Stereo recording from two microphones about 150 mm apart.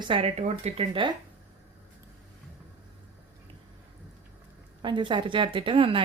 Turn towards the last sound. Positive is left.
turn(degrees=-35)  # may be behind; listen again after turning